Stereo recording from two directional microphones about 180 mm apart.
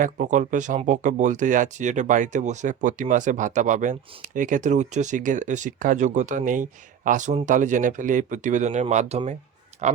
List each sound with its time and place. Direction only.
0.0 s speech: 45° right (ahead or behind)